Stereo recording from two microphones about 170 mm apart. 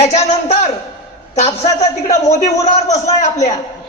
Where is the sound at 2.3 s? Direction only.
45° left (ahead or behind).